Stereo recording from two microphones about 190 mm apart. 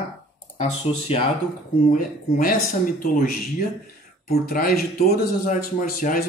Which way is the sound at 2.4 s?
50° left (ahead or behind).